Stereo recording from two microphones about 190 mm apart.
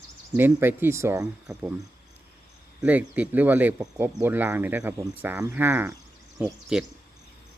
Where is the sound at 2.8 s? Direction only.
10° right (ahead or behind).